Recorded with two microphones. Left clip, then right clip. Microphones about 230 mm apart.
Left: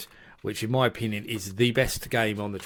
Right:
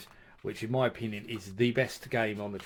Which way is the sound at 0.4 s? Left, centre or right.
Left.